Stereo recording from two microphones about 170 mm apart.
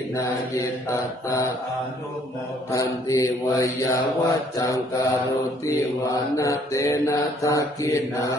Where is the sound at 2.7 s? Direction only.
20° left (ahead or behind).